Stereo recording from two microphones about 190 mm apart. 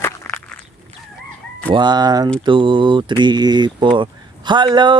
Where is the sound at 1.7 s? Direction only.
25° right (ahead or behind).